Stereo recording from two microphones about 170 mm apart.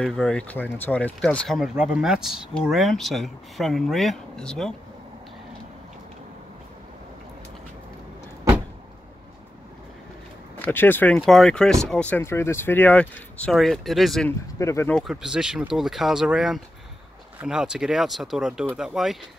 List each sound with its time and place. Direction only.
0.0 s speech: 5° left (ahead or behind)
10.6 s speech: 10° left (ahead or behind)
14.6 s speech: 15° left (ahead or behind)
15.0 s speech: 5° right (ahead or behind)